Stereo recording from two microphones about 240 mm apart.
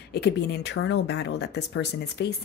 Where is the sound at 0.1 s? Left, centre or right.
Left.